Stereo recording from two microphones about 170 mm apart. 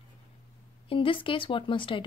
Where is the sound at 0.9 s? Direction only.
30° left (ahead or behind).